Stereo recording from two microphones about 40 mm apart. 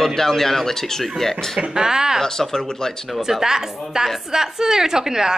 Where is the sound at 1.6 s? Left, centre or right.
Centre.